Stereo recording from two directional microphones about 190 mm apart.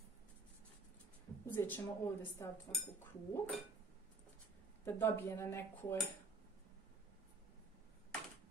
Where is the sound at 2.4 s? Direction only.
15° left (ahead or behind).